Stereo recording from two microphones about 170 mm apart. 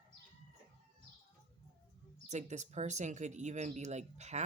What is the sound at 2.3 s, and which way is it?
Speech, 45° right (ahead or behind).